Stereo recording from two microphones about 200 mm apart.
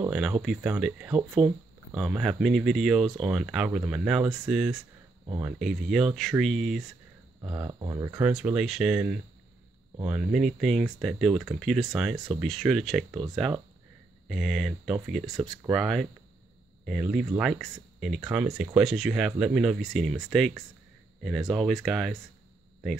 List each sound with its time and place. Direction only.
0.0 s speech: 5° right (ahead or behind)
7.6 s speech: 20° right (ahead or behind)
8.3 s speech: 5° right (ahead or behind)
14.2 s speech: centre (ahead or behind)